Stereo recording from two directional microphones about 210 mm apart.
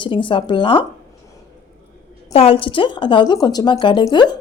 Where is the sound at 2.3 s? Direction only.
25° left (ahead or behind).